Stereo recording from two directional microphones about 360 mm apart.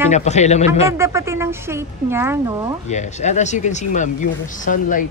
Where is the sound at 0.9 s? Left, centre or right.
Centre.